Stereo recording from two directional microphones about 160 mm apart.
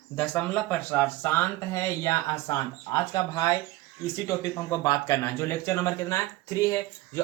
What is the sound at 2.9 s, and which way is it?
A man's voice, 25° left (ahead or behind).